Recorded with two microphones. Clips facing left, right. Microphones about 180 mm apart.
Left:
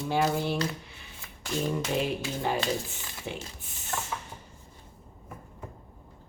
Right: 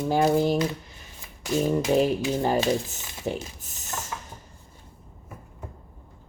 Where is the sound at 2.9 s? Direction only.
40° right (ahead or behind).